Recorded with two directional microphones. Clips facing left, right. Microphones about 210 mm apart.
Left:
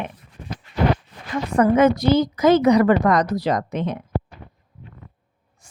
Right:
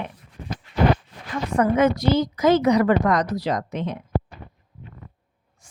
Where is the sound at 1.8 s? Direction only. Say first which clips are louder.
Left 2 dB; 55° left (ahead or behind).